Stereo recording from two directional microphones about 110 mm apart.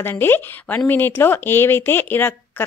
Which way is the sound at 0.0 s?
20° left (ahead or behind).